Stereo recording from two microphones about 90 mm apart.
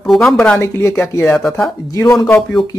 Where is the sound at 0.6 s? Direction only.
30° left (ahead or behind).